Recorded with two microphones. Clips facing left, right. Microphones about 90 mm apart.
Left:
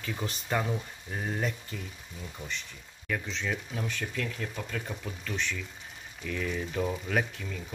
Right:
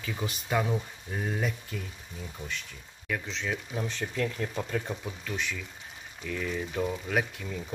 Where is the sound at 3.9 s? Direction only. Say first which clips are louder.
Right 4 dB; 30° right (ahead or behind).